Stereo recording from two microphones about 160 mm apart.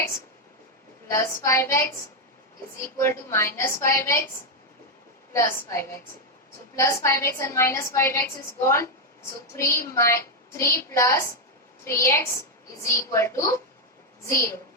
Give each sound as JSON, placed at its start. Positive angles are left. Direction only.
{"t": 1.0, "sound": "a woman's voice", "side_deg": 15}
{"t": 3.0, "sound": "a woman's voice", "side_deg": 15}
{"t": 5.3, "sound": "a woman's voice", "side_deg": 15}